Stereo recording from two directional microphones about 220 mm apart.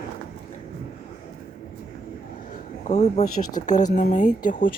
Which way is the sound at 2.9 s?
30° left (ahead or behind).